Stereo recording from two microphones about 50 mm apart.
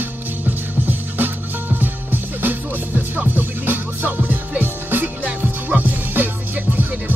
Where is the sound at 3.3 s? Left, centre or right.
Right.